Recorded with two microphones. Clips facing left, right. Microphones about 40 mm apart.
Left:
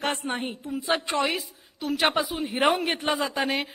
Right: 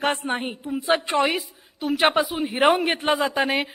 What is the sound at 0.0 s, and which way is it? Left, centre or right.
Speech, centre.